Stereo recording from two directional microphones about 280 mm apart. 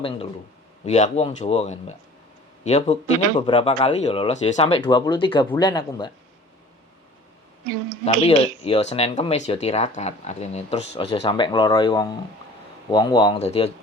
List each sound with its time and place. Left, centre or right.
0.0 s speech: centre
8.0 s speech: left